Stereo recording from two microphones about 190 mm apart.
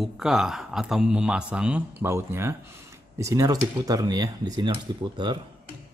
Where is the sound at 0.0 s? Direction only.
Centre (ahead or behind); by 5.4 s 25° right (ahead or behind).